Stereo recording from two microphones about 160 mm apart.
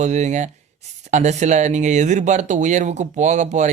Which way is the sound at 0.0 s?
45° right (ahead or behind).